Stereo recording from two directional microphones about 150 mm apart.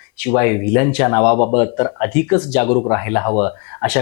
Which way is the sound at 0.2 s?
20° left (ahead or behind).